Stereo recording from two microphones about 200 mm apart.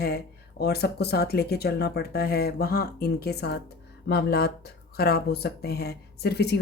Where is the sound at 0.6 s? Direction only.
55° left (ahead or behind).